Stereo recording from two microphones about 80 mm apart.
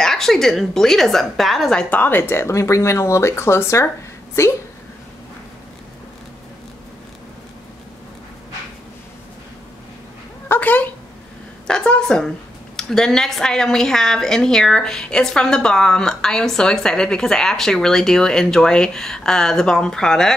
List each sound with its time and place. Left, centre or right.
0.0 s a woman's voice: centre
1.9 s speech: left
10.5 s speech: left
11.6 s a woman's voice: centre